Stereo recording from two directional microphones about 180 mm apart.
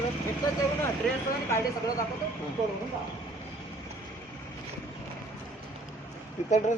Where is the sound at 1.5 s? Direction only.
15° left (ahead or behind).